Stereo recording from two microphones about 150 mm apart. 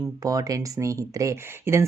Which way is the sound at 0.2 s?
20° right (ahead or behind).